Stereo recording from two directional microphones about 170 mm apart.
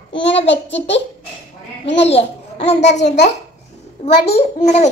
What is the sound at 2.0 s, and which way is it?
Speech, 40° left (ahead or behind).